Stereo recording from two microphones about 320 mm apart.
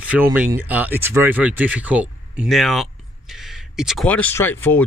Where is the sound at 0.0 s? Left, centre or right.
Centre.